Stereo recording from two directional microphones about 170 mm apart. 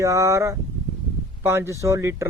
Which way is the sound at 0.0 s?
20° right (ahead or behind).